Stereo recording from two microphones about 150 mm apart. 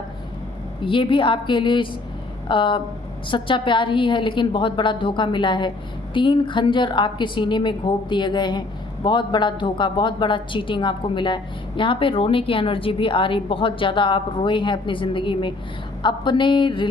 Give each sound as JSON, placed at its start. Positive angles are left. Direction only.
{"t": 0.9, "sound": "a woman's voice", "side_deg": 35}